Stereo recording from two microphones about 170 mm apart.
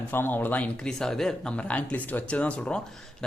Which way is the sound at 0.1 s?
10° left (ahead or behind).